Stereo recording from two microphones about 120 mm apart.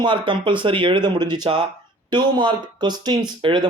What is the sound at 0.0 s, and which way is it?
Speech, 40° right (ahead or behind).